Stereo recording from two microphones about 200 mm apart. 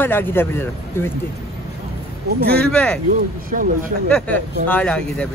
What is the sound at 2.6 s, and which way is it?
Speech, 5° left (ahead or behind).